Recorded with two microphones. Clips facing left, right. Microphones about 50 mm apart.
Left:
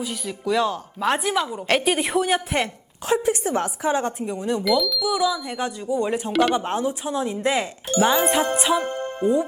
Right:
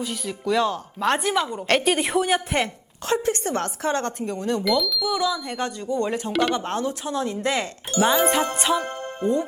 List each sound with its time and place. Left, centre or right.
0.0 s speech: centre
4.6 s speech: centre
7.9 s speech: left
8.3 s speech: centre